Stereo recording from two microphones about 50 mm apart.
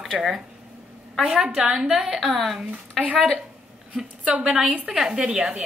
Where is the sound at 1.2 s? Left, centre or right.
Centre.